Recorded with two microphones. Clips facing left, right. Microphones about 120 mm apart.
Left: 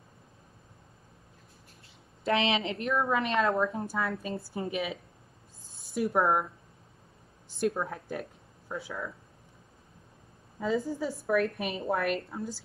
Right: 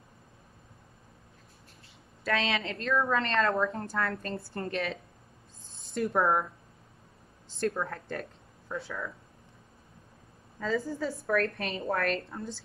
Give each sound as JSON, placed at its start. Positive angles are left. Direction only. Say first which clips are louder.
{"t": 2.2, "sound": "a woman's voice", "louder": "left 3 dB", "side_deg": 20}
{"t": 7.5, "sound": "speech", "louder": "left 1 dB", "side_deg": 15}
{"t": 10.6, "sound": "a woman's voice", "louder": "left 1 dB", "side_deg": 20}